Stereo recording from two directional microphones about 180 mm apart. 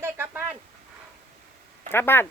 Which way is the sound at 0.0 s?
10° right (ahead or behind).